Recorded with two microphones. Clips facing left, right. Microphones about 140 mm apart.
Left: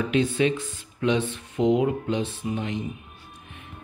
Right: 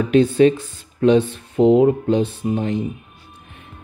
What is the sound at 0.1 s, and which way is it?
Speech, 35° right (ahead or behind).